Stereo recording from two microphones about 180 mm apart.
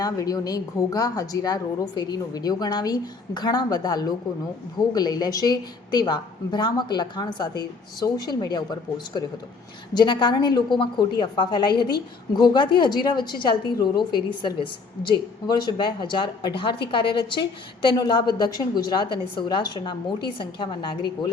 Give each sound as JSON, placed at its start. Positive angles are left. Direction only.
{"t": 0.0, "sound": "a woman's voice", "side_deg": 20}